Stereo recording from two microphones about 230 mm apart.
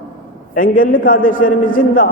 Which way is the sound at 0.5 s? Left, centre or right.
Left.